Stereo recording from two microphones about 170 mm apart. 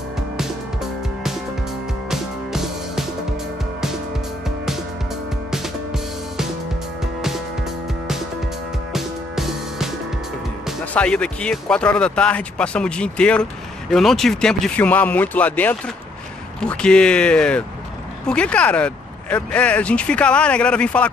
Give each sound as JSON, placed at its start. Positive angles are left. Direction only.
{"t": 2.0, "sound": "music", "side_deg": 0}
{"t": 8.9, "sound": "music", "side_deg": 0}
{"t": 10.9, "sound": "speech", "side_deg": 5}